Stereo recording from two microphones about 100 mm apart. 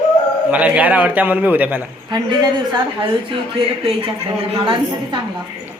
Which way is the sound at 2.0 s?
40° right (ahead or behind).